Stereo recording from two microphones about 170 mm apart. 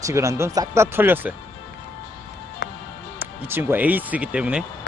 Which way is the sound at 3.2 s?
10° right (ahead or behind).